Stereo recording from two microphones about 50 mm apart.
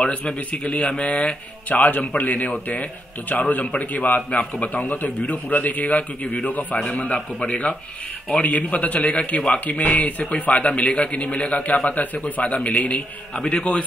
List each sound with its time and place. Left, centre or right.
0.0 s a man's voice: left